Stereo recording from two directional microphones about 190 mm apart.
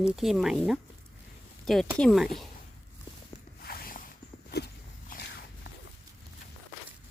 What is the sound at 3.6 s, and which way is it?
Walk, 50° left (ahead or behind).